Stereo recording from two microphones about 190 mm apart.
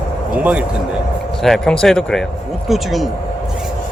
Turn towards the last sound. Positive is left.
turn(degrees=0)  # may be behind; listen again after turning